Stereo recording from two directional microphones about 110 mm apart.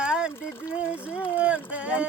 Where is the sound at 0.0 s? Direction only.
10° right (ahead or behind).